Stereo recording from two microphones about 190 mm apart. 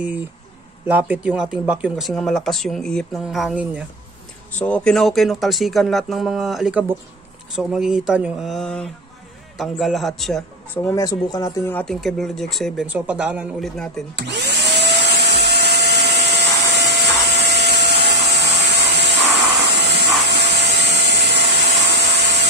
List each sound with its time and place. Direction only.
0.8 s speech: 10° right (ahead or behind)
4.5 s speech: 5° left (ahead or behind)
10.8 s speech: 15° left (ahead or behind)
14.1 s vacuum cleaner: 65° right (ahead or behind)